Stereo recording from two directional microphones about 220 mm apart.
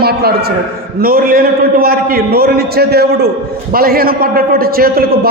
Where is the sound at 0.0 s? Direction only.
45° right (ahead or behind).